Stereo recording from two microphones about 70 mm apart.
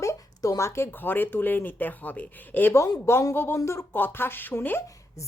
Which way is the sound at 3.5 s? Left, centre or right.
Left.